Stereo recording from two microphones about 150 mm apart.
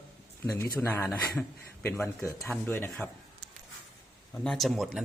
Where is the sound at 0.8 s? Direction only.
10° left (ahead or behind).